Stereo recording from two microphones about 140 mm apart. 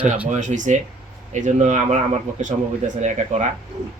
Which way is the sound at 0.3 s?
60° right (ahead or behind).